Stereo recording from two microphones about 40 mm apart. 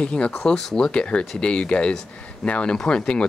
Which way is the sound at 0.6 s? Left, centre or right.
Centre.